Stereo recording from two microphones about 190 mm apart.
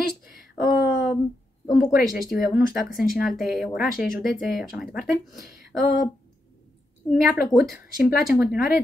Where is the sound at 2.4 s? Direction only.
45° left (ahead or behind).